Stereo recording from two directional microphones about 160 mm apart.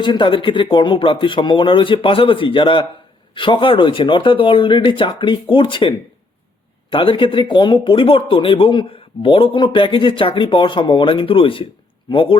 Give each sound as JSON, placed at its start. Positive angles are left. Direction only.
{"t": 0.0, "sound": "speech", "side_deg": 30}
{"t": 6.9, "sound": "speech", "side_deg": 30}